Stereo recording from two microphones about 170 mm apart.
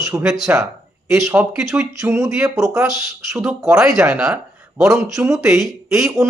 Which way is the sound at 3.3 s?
5° right (ahead or behind).